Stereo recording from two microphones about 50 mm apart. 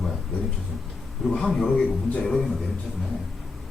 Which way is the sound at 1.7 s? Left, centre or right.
Left.